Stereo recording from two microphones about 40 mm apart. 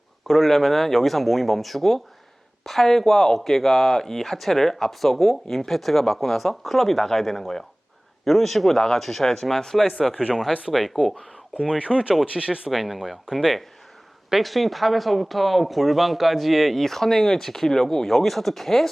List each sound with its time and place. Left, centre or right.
0.3 s speech: centre
10.2 s speech: centre
10.7 s speech: centre
11.7 s speech: right
12.6 s speech: centre